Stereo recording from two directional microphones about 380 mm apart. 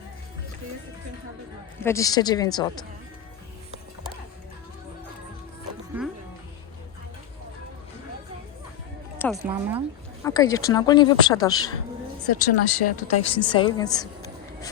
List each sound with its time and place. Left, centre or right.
1.8 s speech: centre
5.9 s music: centre
9.3 s speech: centre
10.2 s speech: centre
12.4 s speech: left
13.5 s a woman's voice: centre